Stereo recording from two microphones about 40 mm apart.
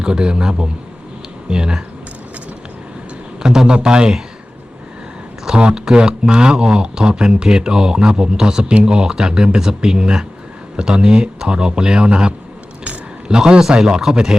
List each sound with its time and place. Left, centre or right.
0.0 s speech: right
3.4 s a man's voice: centre
5.5 s a man's voice: right